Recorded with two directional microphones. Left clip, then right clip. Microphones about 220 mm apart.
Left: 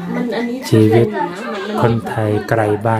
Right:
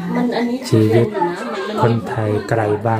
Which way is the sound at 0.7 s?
15° left (ahead or behind).